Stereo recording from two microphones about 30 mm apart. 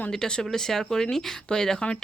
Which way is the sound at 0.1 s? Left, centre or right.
Centre.